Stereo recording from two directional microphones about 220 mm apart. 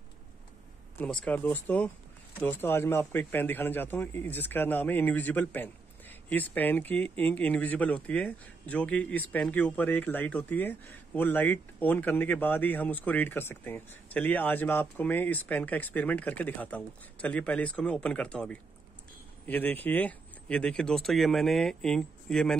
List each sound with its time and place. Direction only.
0.9 s speech: 5° left (ahead or behind)